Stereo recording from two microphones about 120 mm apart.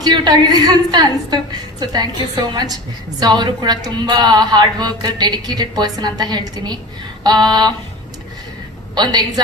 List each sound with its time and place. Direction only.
0.0 s speech: 35° right (ahead or behind)
9.0 s speech: 35° right (ahead or behind)